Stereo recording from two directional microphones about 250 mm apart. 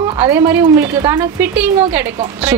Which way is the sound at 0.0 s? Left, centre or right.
Centre.